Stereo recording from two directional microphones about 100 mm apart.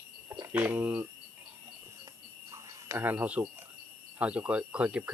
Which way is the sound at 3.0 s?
15° right (ahead or behind).